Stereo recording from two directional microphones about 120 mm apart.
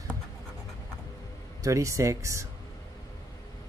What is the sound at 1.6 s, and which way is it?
Speech, 25° right (ahead or behind).